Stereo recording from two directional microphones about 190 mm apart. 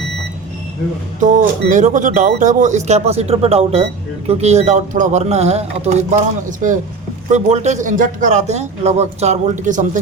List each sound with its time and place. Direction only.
1.2 s a man's voice: 40° right (ahead or behind)